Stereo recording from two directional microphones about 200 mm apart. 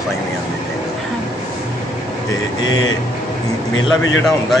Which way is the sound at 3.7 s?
75° left (ahead or behind).